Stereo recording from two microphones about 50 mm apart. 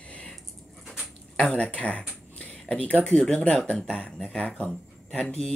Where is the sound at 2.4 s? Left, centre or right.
Left.